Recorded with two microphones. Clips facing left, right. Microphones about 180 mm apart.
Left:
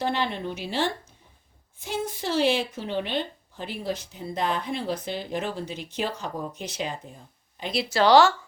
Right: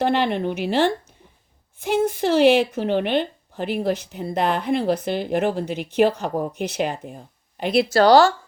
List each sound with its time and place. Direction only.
0.0 s speech: 65° right (ahead or behind)
7.9 s speech: 40° right (ahead or behind)